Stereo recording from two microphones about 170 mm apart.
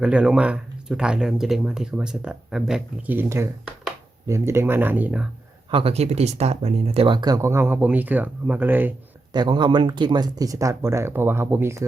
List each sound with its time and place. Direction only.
0.0 s speech: 5° right (ahead or behind)
5.7 s speech: 35° right (ahead or behind); by 8.9 s 10° right (ahead or behind)
9.3 s speech: 25° right (ahead or behind)